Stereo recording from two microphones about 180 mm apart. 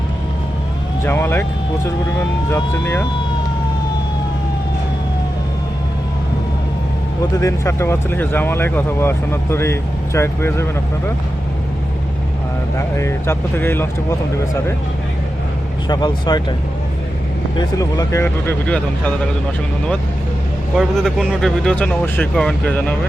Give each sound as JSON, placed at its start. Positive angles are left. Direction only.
{"t": 1.0, "sound": "speech", "side_deg": 10}
{"t": 2.5, "sound": "speech", "side_deg": 15}
{"t": 7.3, "sound": "speech", "side_deg": 15}
{"t": 12.7, "sound": "speech", "side_deg": 15}
{"t": 15.9, "sound": "speech", "side_deg": 25}
{"t": 17.6, "sound": "speech", "side_deg": 20}
{"t": 20.7, "sound": "speech", "side_deg": 0}